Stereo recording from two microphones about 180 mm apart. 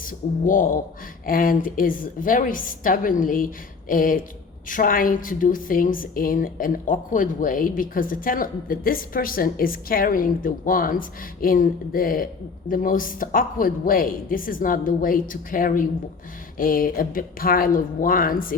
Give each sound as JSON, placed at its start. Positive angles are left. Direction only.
{"t": 0.0, "sound": "a woman's voice", "side_deg": 50}